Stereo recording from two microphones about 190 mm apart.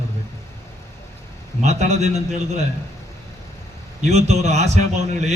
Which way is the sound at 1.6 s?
35° right (ahead or behind).